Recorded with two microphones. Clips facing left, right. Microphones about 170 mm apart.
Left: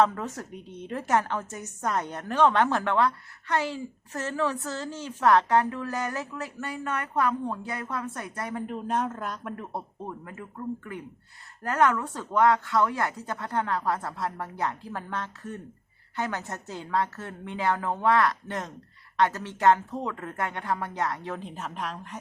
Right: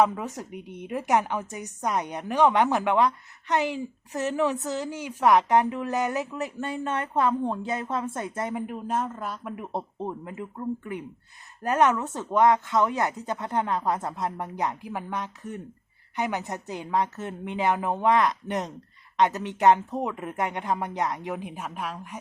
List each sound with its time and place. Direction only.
0.0 s a woman's voice: 15° right (ahead or behind)
8.6 s speech: 5° right (ahead or behind)
10.8 s a woman's voice: 20° right (ahead or behind)